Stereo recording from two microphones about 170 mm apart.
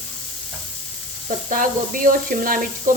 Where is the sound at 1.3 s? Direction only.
50° right (ahead or behind).